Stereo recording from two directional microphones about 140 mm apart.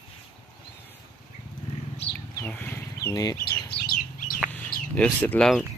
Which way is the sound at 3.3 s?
90° left.